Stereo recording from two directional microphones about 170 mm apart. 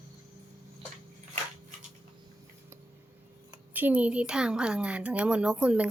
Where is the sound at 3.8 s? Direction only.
10° right (ahead or behind).